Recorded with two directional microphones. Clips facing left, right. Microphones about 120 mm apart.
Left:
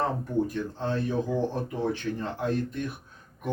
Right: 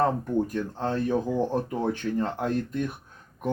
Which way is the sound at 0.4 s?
50° right (ahead or behind).